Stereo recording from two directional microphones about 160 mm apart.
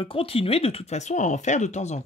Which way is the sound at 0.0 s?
35° left (ahead or behind).